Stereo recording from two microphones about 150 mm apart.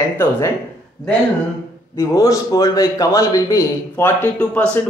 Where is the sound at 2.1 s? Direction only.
20° left (ahead or behind).